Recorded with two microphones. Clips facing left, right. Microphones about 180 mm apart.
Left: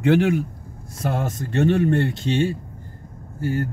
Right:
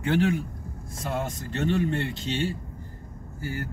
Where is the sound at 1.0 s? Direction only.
65° left (ahead or behind).